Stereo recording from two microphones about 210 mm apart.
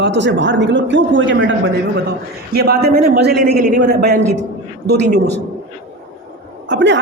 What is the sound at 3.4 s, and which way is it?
Speech, 35° right (ahead or behind).